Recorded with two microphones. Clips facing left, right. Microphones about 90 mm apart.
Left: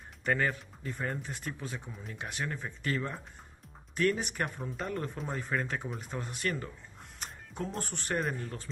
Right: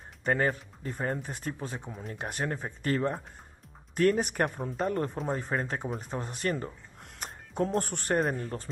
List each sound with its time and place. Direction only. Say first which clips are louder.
0.2 s speech: right 3 dB; 35° right (ahead or behind)
7.2 s speech: right 8 dB; 50° right (ahead or behind)